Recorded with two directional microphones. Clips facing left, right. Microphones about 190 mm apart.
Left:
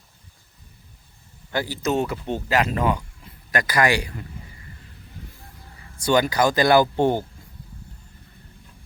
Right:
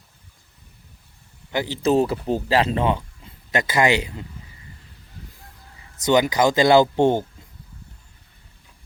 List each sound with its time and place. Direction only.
1.5 s speech: 25° right (ahead or behind)
6.0 s speech: 20° right (ahead or behind)